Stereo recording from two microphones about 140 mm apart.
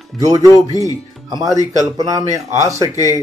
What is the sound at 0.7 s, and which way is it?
Speech, 25° left (ahead or behind).